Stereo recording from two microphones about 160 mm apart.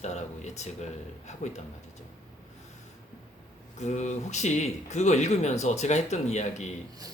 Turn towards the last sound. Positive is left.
turn(degrees=45)  # may be behind; listen again after turning